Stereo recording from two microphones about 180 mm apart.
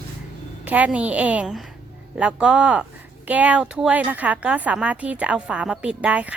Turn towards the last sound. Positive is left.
turn(degrees=-5)  # may be behind; listen again after turning